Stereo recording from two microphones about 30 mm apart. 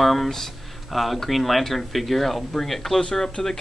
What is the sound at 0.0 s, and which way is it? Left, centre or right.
Speech, centre.